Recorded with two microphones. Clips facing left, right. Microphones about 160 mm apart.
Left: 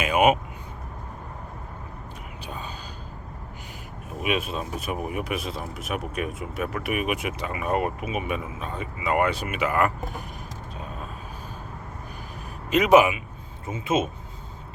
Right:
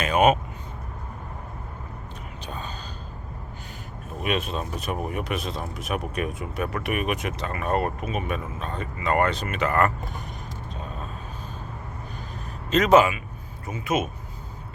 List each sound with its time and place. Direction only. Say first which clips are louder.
0.0 s vehicle: even; 10° left (ahead or behind)
2.5 s whispering: right 1 dB; 10° left (ahead or behind)
4.2 s speech: even; 5° left (ahead or behind)
12.7 s speech: even; 15° left (ahead or behind)